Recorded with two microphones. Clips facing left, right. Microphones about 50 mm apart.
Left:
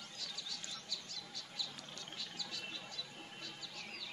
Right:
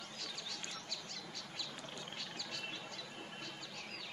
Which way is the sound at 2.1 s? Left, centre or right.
Right.